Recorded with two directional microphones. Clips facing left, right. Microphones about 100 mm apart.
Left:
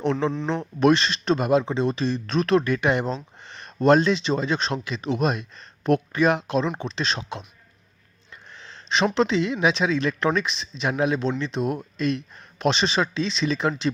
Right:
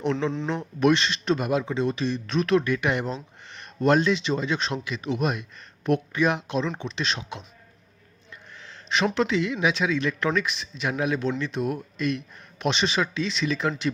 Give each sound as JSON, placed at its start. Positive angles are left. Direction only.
{"t": 0.0, "sound": "a man's voice", "side_deg": 35}
{"t": 8.5, "sound": "a sound", "side_deg": 30}
{"t": 9.1, "sound": "speech", "side_deg": 30}